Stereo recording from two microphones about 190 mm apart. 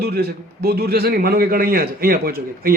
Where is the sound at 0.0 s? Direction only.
55° right (ahead or behind).